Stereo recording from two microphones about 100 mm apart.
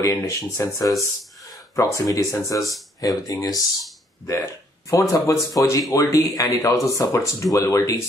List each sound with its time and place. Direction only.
0.0 s speech: 30° left (ahead or behind)
1.8 s speech: 30° left (ahead or behind)